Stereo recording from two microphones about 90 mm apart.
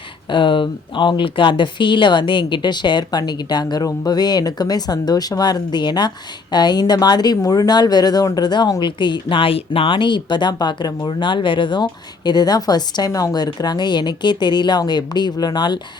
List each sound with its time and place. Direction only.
0.3 s a woman's voice: 65° left (ahead or behind)